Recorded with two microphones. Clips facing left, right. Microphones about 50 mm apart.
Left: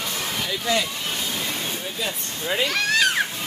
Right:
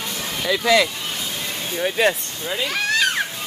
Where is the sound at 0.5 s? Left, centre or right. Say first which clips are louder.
Right 8 dB; right.